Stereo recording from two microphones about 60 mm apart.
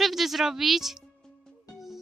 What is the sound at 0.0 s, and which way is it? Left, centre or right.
A woman's voice, centre.